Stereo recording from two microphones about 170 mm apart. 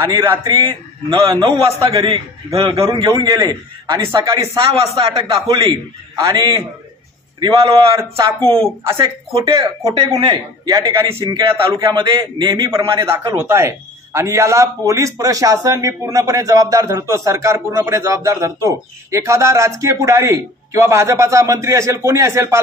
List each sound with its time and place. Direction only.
0.0 s a man's voice: 25° right (ahead or behind)
8.8 s a man's voice: 15° right (ahead or behind)